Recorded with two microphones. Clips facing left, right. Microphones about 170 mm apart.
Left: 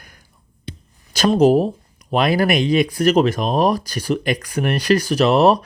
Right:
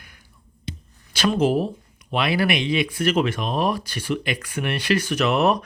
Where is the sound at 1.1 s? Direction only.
40° left (ahead or behind).